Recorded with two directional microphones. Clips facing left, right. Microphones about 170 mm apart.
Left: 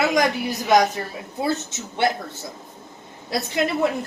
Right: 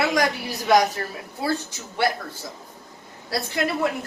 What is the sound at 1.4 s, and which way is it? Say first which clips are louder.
A woman's voice: left 2 dB; 20° left (ahead or behind).